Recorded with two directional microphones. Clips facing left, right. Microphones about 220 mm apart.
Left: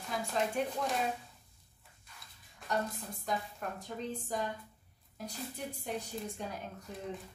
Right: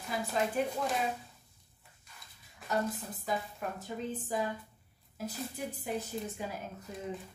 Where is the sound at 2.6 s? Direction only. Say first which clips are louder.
Right 2 dB; centre (ahead or behind).